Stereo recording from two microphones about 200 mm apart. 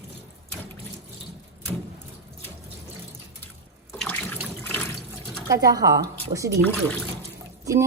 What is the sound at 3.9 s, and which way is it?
Water, 10° left (ahead or behind).